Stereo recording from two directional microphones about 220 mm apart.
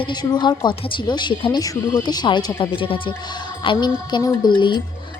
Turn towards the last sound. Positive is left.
turn(degrees=20)  # may be behind; listen again after turning